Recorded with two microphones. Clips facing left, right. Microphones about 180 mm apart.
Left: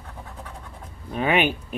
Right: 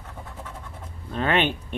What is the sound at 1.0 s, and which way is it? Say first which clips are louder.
Speech: left 1 dB; 10° left (ahead or behind).